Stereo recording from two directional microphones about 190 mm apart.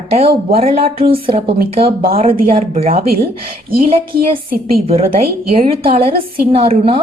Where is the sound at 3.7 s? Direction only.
50° right (ahead or behind).